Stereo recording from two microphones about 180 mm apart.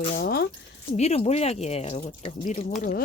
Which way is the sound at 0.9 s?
35° left (ahead or behind).